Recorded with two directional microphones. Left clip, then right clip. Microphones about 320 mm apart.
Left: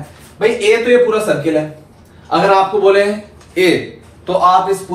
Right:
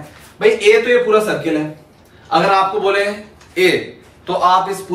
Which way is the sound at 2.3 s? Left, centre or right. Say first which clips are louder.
Left 2 dB; centre.